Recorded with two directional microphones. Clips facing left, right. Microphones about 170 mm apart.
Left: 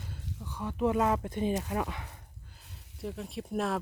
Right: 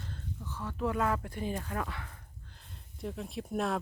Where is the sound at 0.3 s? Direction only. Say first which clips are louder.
Left 5 dB; 15° left (ahead or behind).